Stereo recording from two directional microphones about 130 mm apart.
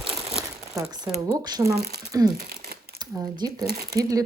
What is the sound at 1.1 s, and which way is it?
Speech, 30° right (ahead or behind).